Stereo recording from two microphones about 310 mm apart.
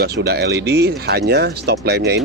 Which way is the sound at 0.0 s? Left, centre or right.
Right.